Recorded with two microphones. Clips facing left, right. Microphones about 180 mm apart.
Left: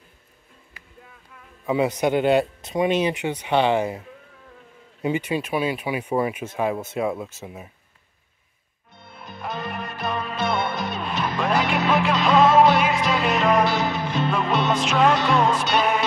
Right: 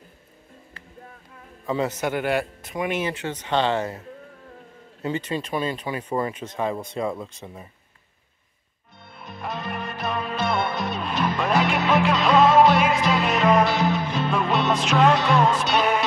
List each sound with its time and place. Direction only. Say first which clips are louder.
1.7 s speech: left 4 dB; 10° left (ahead or behind)
5.0 s speech: left 3 dB; 10° left (ahead or behind)
9.0 s music: even; centre (ahead or behind)